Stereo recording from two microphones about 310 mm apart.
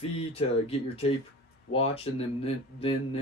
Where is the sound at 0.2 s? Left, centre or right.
Centre.